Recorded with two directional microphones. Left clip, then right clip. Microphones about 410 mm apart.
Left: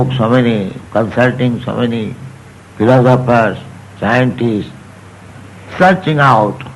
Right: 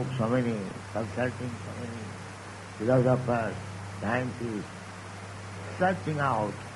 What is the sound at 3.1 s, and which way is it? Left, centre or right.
A man's voice, right.